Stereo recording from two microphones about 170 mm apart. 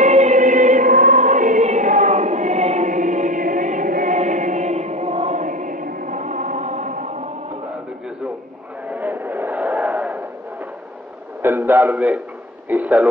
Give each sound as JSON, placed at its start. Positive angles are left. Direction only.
{"t": 0.0, "sound": "choir", "side_deg": -40}
{"t": 8.9, "sound": "vehicle", "side_deg": -10}
{"t": 9.9, "sound": "a sound", "side_deg": -5}
{"t": 11.4, "sound": "a man's voice", "side_deg": -15}